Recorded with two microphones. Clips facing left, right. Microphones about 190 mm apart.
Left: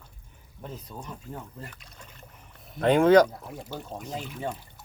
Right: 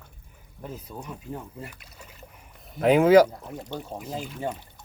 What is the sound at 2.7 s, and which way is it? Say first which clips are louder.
Speech: right 2 dB; 5° right (ahead or behind).